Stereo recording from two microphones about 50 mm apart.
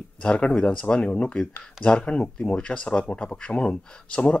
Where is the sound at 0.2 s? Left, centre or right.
Left.